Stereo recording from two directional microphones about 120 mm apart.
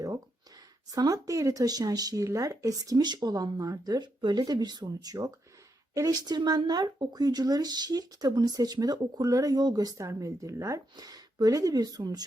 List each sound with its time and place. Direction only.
0.9 s speech: 30° right (ahead or behind)